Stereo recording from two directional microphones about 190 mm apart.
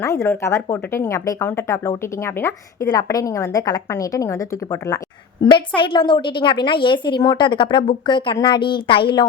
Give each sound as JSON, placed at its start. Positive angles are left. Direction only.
{"t": 0.0, "sound": "speech", "side_deg": 15}
{"t": 5.4, "sound": "a woman's voice", "side_deg": 25}